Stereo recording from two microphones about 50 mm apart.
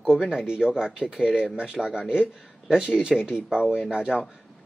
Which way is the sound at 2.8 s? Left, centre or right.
Right.